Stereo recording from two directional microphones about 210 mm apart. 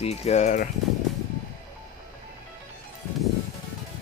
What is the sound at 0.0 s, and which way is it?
Speech, 30° left (ahead or behind).